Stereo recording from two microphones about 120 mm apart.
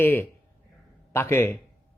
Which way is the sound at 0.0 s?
15° left (ahead or behind).